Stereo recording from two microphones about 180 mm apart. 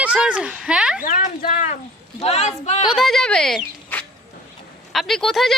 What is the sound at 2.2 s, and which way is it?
Speech, 35° left (ahead or behind).